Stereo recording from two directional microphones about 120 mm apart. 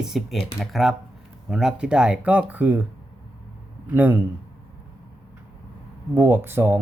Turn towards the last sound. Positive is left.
turn(degrees=-20)  # may be behind; listen again after turning